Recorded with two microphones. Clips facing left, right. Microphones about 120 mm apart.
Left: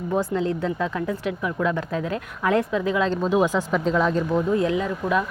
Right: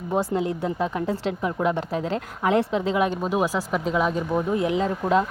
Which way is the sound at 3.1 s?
10° right (ahead or behind).